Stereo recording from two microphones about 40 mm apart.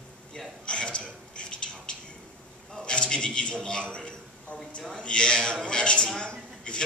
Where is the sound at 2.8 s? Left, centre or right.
Left.